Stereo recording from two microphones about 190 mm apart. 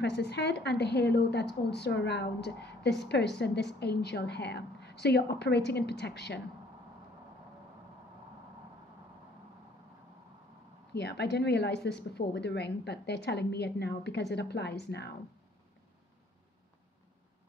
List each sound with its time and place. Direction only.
0.0 s a woman's voice: 60° left (ahead or behind)
10.9 s a woman's voice: 60° left (ahead or behind)